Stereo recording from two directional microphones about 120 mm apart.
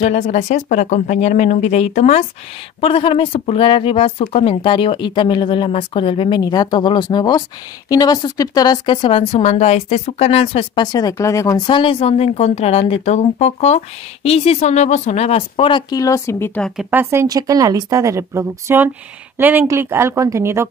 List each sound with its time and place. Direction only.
0.0 s speech: 70° left (ahead or behind)
2.8 s speech: 50° left (ahead or behind)
6.4 s a woman's voice: 35° left (ahead or behind)
9.3 s a woman's voice: 60° left (ahead or behind)
10.8 s a woman's voice: 35° left (ahead or behind)
11.6 s a woman's voice: 45° left (ahead or behind)
15.9 s speech: 30° left (ahead or behind)
16.9 s a woman's voice: 20° right (ahead or behind)